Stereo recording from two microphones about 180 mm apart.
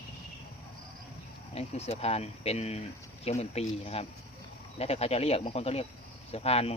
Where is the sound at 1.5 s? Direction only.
35° left (ahead or behind).